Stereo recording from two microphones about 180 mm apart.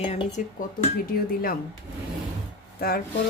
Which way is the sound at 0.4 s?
45° left (ahead or behind).